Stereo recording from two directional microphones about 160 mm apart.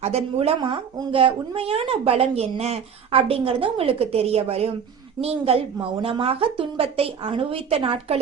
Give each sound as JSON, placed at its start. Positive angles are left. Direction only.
{"t": 0.0, "sound": "speech", "side_deg": -40}